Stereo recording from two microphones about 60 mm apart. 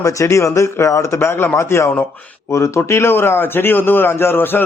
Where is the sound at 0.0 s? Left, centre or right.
Left.